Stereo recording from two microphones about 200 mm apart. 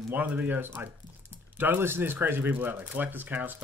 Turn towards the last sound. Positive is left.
turn(degrees=-10)  # may be behind; listen again after turning